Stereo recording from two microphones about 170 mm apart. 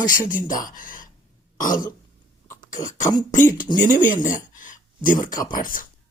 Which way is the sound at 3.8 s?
50° left (ahead or behind).